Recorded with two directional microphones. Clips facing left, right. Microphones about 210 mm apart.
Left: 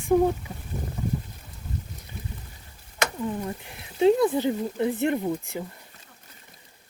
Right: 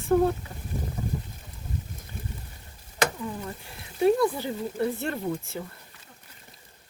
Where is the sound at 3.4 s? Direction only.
20° left (ahead or behind).